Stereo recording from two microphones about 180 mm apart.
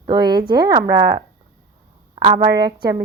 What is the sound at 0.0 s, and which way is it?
Speech, 25° right (ahead or behind).